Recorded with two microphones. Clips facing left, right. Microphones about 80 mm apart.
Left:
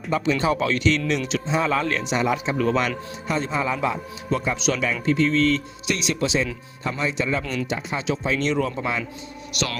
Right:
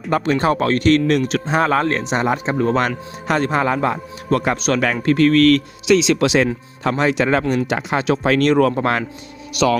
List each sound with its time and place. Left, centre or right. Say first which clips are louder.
0.1 s a man's voice: right 4 dB; right
3.2 s speech: right 7 dB; right
4.5 s a man's voice: right 5 dB; right